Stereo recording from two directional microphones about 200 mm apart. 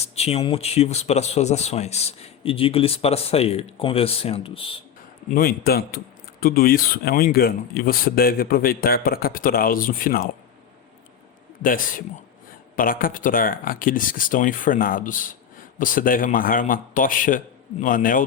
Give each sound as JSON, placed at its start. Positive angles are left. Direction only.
{"t": 0.0, "sound": "speech", "side_deg": 30}
{"t": 5.3, "sound": "speech", "side_deg": 50}
{"t": 11.6, "sound": "speech", "side_deg": 45}